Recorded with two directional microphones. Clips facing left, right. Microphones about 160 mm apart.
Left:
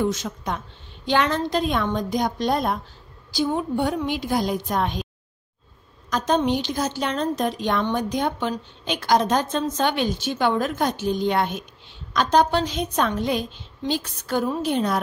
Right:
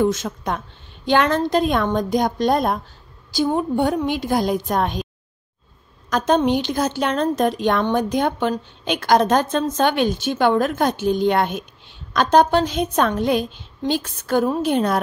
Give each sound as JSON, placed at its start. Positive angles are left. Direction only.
{"t": 0.0, "sound": "a woman's voice", "side_deg": -50}
{"t": 6.0, "sound": "a woman's voice", "side_deg": -60}